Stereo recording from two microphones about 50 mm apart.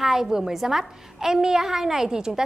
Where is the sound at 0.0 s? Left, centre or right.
Centre.